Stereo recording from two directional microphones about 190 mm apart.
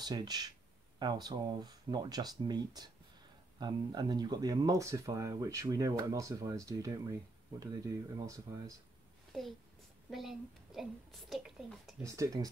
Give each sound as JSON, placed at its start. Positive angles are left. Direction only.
{"t": 0.0, "sound": "speech", "side_deg": -20}
{"t": 9.3, "sound": "a child's voice", "side_deg": 0}
{"t": 12.0, "sound": "speech", "side_deg": -15}